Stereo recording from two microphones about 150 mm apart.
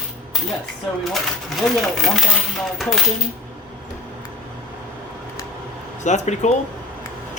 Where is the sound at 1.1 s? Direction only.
Centre (ahead or behind).